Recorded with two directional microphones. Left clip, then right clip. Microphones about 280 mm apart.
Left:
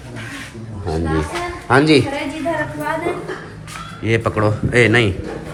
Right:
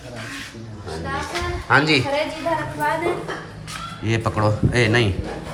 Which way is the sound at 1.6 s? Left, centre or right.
Centre.